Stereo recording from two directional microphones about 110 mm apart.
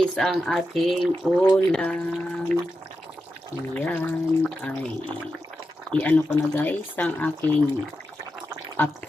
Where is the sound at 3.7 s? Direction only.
15° left (ahead or behind).